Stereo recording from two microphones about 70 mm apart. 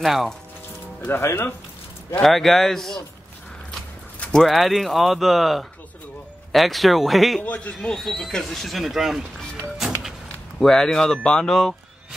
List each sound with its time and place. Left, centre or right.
0.0 s speech: centre
1.0 s speech: left
2.2 s speech: centre
4.4 s speech: centre
7.4 s speech: centre
7.7 s speech: centre
9.8 s music: centre
10.6 s speech: centre